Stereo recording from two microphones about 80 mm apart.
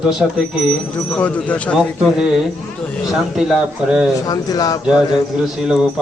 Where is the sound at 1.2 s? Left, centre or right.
Centre.